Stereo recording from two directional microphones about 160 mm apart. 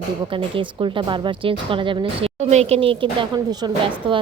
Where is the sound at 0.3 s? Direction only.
30° right (ahead or behind).